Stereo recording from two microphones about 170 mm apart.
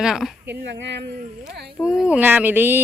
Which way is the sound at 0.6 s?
90° right.